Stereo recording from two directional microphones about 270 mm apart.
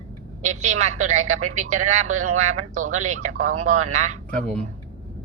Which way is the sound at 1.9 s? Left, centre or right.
Right.